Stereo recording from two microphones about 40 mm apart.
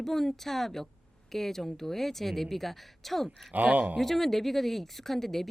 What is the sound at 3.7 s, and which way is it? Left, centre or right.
Speech, right.